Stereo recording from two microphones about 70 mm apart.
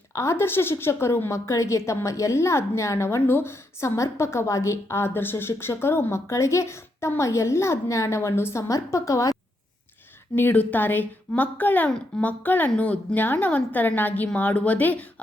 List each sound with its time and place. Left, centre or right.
0.1 s a woman's voice: left
10.3 s a woman's voice: left